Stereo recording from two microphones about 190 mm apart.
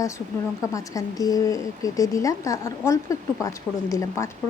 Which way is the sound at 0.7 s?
20° left (ahead or behind).